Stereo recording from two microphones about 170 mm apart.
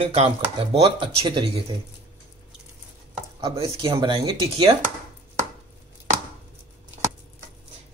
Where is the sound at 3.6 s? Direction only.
30° right (ahead or behind).